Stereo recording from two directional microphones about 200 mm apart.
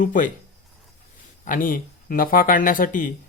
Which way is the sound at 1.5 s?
45° left (ahead or behind).